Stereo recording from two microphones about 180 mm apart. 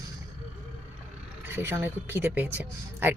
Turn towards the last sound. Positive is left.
turn(degrees=-10)  # may be behind; listen again after turning